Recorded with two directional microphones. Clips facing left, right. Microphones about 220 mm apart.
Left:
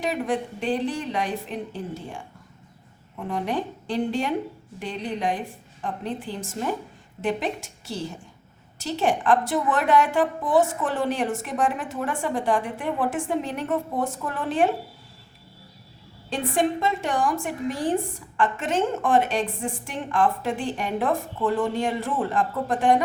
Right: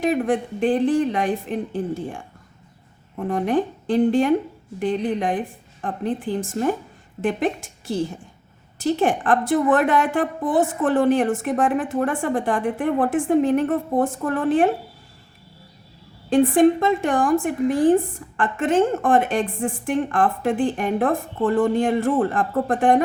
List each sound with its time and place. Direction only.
0.0 s a woman's voice: 50° right (ahead or behind)
3.2 s a woman's voice: 50° right (ahead or behind)
16.3 s a woman's voice: 55° right (ahead or behind)